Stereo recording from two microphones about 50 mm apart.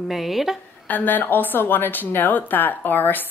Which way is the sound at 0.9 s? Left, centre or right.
Left.